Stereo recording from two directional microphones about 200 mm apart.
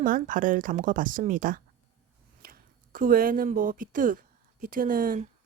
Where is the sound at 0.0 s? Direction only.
40° right (ahead or behind).